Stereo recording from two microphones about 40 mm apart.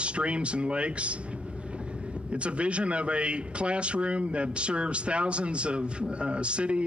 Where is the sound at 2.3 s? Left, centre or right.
Right.